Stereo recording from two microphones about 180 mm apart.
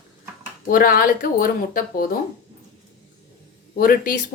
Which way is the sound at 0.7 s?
55° left (ahead or behind).